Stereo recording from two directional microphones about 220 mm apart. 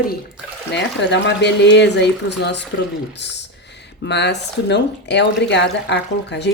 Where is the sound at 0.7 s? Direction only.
50° left (ahead or behind).